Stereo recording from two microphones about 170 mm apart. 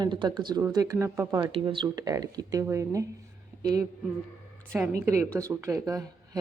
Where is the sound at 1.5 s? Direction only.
30° right (ahead or behind).